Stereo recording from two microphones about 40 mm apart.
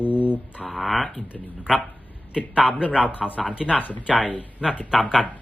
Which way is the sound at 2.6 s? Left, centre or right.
Left.